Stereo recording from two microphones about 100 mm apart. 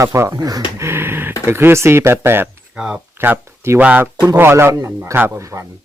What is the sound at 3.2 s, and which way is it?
Speech, 25° right (ahead or behind).